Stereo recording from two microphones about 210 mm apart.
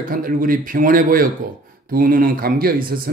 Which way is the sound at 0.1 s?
40° right (ahead or behind).